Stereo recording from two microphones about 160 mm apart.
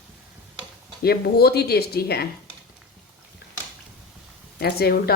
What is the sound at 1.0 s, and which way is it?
Speech, 75° left (ahead or behind).